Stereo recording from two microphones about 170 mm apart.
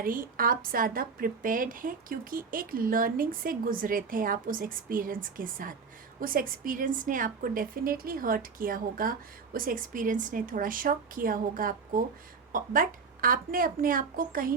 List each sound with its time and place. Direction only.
0.0 s a woman's voice: 55° right (ahead or behind)